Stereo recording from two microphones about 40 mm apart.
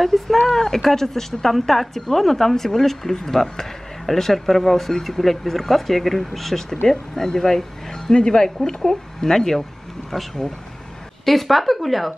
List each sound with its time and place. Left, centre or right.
0.0 s speech: centre